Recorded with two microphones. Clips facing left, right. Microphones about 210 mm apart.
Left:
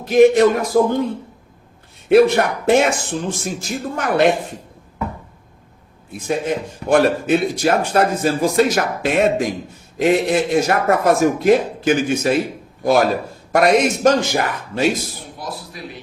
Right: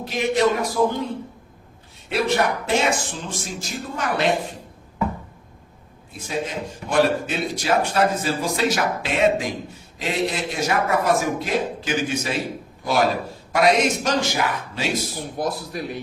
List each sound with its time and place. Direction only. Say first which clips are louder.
0.0 s a man's voice: left 9 dB; 50° left (ahead or behind)
2.0 s a man's voice: left 9 dB; 55° left (ahead or behind)
6.2 s a man's voice: left 6 dB; 55° left (ahead or behind)
15.2 s speech: right 5 dB; 50° right (ahead or behind)